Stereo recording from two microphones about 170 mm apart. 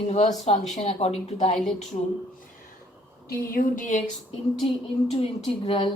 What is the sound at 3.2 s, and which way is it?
Speech, 55° left (ahead or behind).